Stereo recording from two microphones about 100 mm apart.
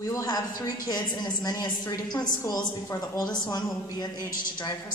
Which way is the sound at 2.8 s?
35° left (ahead or behind).